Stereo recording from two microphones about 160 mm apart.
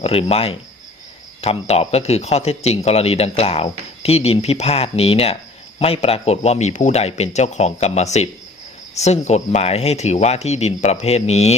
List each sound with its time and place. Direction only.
0.0 s speech: 40° left (ahead or behind)